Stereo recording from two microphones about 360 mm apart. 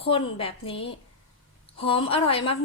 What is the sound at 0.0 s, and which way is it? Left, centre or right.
A woman's voice, centre.